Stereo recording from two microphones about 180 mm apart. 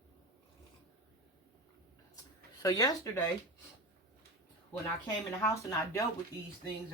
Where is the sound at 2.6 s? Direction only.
20° left (ahead or behind).